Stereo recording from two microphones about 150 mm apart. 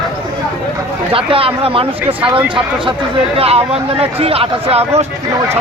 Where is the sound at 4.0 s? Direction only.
40° right (ahead or behind).